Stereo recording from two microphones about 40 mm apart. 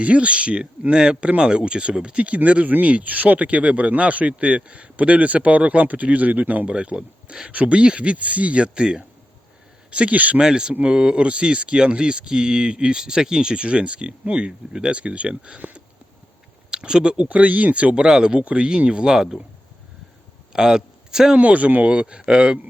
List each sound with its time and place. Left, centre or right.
0.0 s speech: right
6.7 s speech: right
9.9 s speech: right
10.4 s speech: right
17.2 s speech: right
17.9 s speech: centre
20.5 s a sound: centre
21.3 s speech: right
21.8 s speech: right